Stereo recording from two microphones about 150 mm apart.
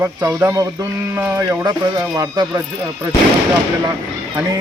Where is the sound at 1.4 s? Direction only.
25° right (ahead or behind).